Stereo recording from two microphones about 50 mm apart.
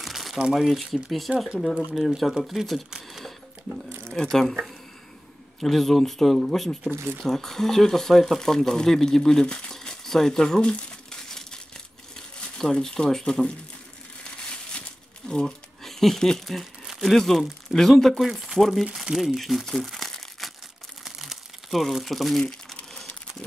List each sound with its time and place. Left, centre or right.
0.0 s crumpling: centre
0.4 s speech: centre
2.0 s speech: centre
3.1 s a sound: centre
4.1 s speech: centre
5.6 s speech: centre
11.1 s crumpling: centre
12.5 s speech: centre
15.2 s speech: centre
18.2 s speech: centre
19.1 s crumpling: centre